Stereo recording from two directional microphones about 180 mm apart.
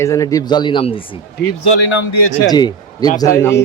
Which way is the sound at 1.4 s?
75° left (ahead or behind).